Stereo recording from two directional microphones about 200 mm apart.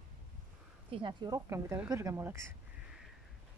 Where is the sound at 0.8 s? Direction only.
25° right (ahead or behind).